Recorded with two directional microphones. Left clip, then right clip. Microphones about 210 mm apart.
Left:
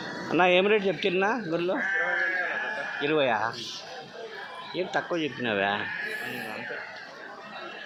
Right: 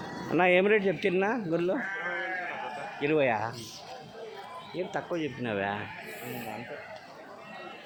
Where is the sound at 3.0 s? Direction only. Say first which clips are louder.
Left 1 dB; 15° right (ahead or behind).